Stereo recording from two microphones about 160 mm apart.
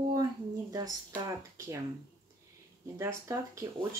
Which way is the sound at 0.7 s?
25° right (ahead or behind).